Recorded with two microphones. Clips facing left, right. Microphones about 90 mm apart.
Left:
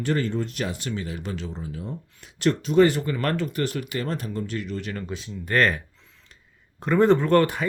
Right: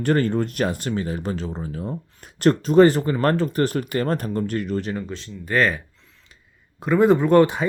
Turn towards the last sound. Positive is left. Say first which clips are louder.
# right 4 dB
turn(degrees=-20)  # may be behind; listen again after turning